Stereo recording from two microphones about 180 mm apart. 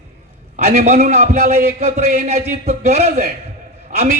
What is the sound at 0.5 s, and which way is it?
A man's voice, 45° right (ahead or behind).